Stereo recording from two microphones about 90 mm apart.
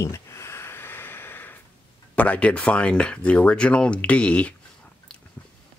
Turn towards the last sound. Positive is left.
turn(degrees=15)  # may be behind; listen again after turning